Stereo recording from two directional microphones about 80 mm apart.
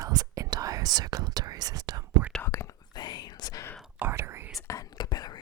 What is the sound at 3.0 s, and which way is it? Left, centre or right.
Whispering, left.